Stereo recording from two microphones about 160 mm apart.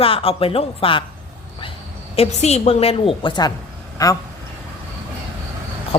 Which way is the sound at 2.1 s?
40° left (ahead or behind).